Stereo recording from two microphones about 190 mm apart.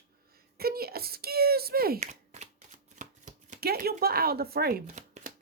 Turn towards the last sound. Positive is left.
turn(degrees=-40)  # may be behind; listen again after turning